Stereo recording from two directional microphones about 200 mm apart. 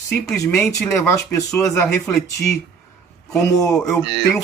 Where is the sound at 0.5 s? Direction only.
5° left (ahead or behind).